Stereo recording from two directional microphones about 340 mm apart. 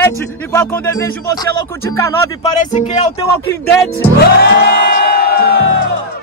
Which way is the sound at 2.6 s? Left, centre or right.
Left.